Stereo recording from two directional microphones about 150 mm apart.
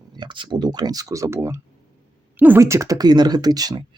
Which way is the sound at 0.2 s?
30° right (ahead or behind).